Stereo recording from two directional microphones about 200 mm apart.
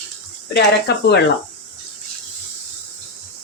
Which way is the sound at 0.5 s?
55° left (ahead or behind).